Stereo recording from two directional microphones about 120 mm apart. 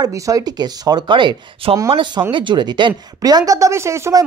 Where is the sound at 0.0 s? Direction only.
30° right (ahead or behind).